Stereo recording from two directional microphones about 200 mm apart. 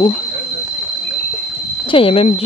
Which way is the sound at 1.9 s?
30° left (ahead or behind).